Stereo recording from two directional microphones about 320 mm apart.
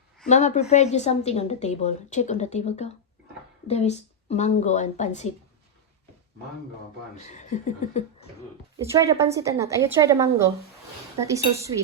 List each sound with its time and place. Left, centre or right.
0.3 s a woman's voice: left
7.2 s a woman's voice: left
8.8 s a woman's voice: centre